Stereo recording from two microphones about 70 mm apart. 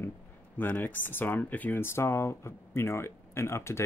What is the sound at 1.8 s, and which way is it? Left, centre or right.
Speech, left.